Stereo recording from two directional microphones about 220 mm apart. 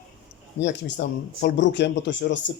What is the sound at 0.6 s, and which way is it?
Speech, 55° left (ahead or behind).